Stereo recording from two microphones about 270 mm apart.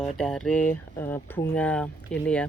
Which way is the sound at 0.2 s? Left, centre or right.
Centre.